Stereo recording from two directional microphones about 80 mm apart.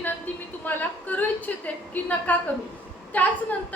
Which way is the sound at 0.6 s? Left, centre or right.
Left.